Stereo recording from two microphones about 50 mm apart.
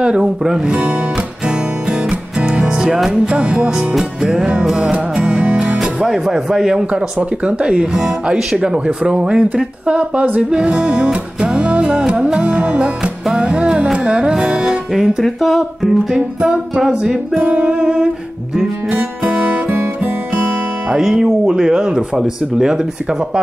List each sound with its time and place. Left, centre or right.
0.0 s speech: centre
0.7 s speech: right
1.1 s music: centre
3.1 s speech: right
4.9 s music: right
6.0 s speech: centre
6.9 s speech: right
13.2 s speech: centre
14.9 s speech: centre
16.3 s speech: right
17.4 s music: right
19.2 s music: right
20.9 s speech: centre